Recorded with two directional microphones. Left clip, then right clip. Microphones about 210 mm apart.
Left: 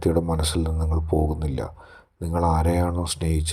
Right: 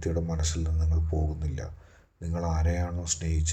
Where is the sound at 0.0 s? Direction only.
35° left (ahead or behind).